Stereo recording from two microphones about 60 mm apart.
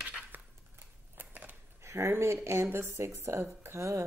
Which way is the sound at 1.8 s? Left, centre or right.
Right.